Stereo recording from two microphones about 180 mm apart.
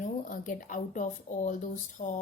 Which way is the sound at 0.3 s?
45° left (ahead or behind).